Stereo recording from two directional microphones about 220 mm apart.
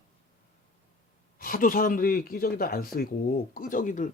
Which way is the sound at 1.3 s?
40° left (ahead or behind).